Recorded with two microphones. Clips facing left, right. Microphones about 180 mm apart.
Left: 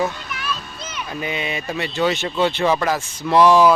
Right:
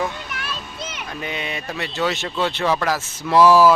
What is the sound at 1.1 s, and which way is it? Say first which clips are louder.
Speech: left 4 dB; 5° left (ahead or behind).